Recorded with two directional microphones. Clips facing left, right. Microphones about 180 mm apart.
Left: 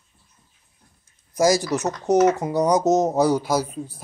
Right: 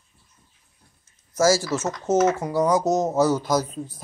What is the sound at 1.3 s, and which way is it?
Speech, 15° left (ahead or behind).